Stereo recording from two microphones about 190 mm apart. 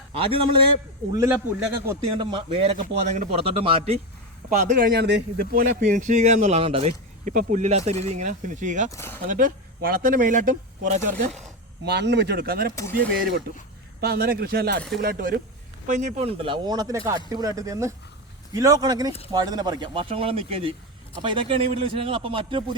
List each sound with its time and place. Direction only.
0.1 s a man's voice: 30° right (ahead or behind)
1.1 s a man's voice: 15° right (ahead or behind)
2.1 s speech: 25° right (ahead or behind)
3.0 s speech: 35° right (ahead or behind)
4.4 s speech: 55° right (ahead or behind)
8.9 s speech: 15° left (ahead or behind)
9.2 s speech: 45° right (ahead or behind)
11.9 s speech: 60° right (ahead or behind)
14.0 s speech: 55° right (ahead or behind)
15.9 s a man's voice: 40° right (ahead or behind)